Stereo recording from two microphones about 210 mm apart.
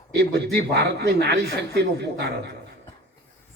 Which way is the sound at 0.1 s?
50° right (ahead or behind).